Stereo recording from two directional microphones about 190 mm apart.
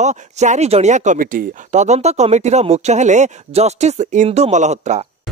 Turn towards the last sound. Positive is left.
turn(degrees=-35)  # may be behind; listen again after turning